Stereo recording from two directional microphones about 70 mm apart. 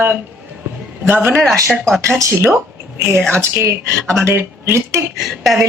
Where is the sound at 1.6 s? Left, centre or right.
Centre.